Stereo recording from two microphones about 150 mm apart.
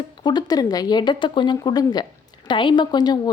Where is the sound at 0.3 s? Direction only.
25° left (ahead or behind).